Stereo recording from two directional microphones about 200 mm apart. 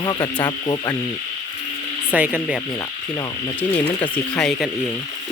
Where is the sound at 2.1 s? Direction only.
5° right (ahead or behind).